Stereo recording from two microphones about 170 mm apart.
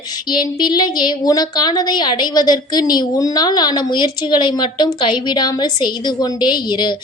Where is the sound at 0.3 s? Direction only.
25° left (ahead or behind).